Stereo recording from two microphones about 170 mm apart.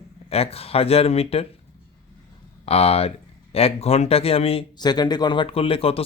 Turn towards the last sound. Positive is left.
turn(degrees=35)  # may be behind; listen again after turning